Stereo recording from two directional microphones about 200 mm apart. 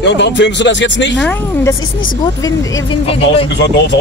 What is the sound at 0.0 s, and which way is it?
Speech, 60° left (ahead or behind).